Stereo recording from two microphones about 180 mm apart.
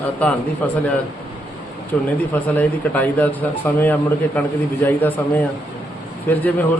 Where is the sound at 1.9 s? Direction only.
10° left (ahead or behind).